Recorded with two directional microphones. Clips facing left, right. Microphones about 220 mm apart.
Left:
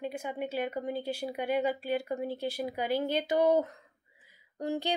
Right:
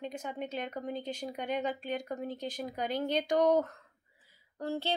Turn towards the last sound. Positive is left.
turn(degrees=15)  # may be behind; listen again after turning